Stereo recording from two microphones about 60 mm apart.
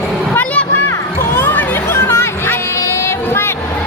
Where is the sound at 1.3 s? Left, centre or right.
Left.